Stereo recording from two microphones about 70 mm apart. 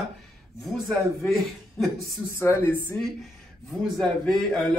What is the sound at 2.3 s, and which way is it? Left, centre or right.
Speech, left.